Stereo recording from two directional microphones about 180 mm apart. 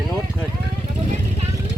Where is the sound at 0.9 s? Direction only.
40° right (ahead or behind).